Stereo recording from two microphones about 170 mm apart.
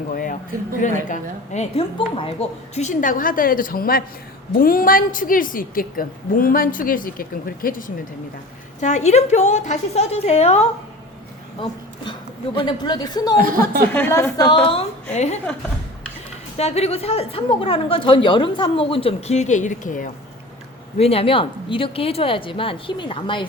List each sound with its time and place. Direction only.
0.1 s a sound: 50° left (ahead or behind)
0.8 s a woman's voice: 45° left (ahead or behind)
12.5 s a woman's voice: 25° left (ahead or behind)
13.4 s speech: 55° right (ahead or behind)
13.9 s a woman's voice: 15° left (ahead or behind); by 15.4 s 40° left (ahead or behind)
16.6 s a woman's voice: 40° left (ahead or behind)
21.0 s a woman's voice: 35° left (ahead or behind)